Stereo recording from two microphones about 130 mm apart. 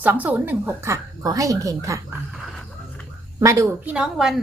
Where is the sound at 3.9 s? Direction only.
5° right (ahead or behind).